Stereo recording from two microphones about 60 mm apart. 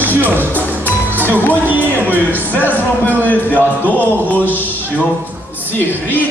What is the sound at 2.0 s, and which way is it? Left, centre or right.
A man's voice, left.